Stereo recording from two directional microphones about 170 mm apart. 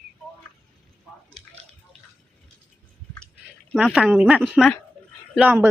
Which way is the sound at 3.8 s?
Centre (ahead or behind).